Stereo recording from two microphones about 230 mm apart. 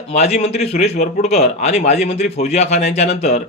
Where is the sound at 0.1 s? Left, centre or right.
Left.